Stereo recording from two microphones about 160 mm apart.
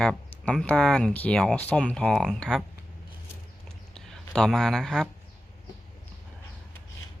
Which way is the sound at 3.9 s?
5° left (ahead or behind).